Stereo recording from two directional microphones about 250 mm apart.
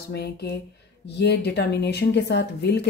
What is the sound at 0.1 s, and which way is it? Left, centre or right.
Speech, left.